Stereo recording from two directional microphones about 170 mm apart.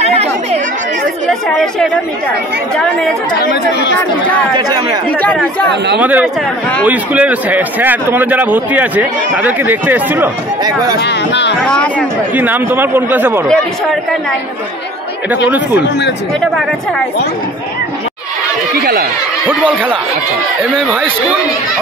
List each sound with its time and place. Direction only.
0.0 s chatter: 40° right (ahead or behind)
2.7 s speech: 5° left (ahead or behind)
3.3 s speech: 65° left (ahead or behind)
4.6 s speech: 25° right (ahead or behind)
5.2 s speech: 5° left (ahead or behind)
5.9 s a man's voice: 10° right (ahead or behind)
10.6 s speech: 25° right (ahead or behind)
11.0 s speech: 90° left
11.6 s speech: 5° left (ahead or behind)
12.4 s a man's voice: 10° right (ahead or behind)
18.8 s speech: 65° right (ahead or behind)
19.4 s a man's voice: 10° right (ahead or behind)